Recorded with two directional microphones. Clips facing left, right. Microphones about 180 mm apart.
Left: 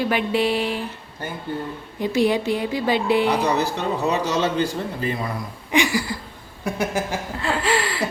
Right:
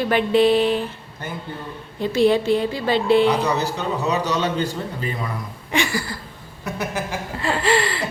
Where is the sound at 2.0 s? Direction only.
15° left (ahead or behind).